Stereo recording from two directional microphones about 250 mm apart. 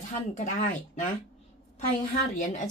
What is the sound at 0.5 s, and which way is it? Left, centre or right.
Speech, left.